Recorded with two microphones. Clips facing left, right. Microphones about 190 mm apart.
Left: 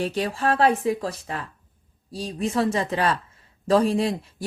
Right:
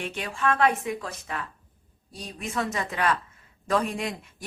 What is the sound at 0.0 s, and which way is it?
Speech, 35° left (ahead or behind).